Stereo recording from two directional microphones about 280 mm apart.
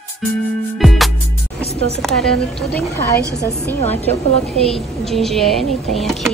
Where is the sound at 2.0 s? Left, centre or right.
Centre.